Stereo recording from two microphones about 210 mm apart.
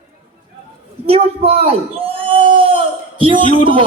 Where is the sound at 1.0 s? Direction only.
30° right (ahead or behind).